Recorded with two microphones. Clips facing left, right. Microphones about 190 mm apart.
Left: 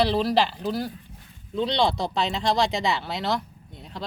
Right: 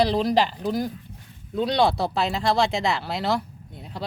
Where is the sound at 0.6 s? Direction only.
15° right (ahead or behind).